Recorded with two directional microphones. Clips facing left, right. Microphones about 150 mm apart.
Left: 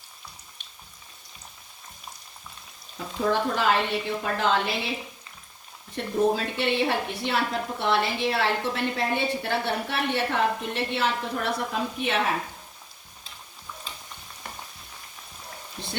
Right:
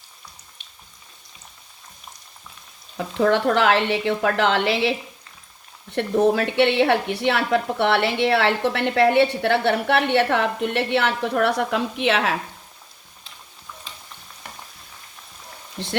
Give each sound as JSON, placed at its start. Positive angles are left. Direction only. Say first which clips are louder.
{"t": 3.2, "sound": "a woman's voice", "louder": "right 7 dB", "side_deg": -75}